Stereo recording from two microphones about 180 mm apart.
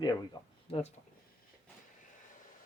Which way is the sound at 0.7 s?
35° left (ahead or behind).